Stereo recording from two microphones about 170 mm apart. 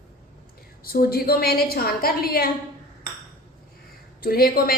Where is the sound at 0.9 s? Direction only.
60° left (ahead or behind).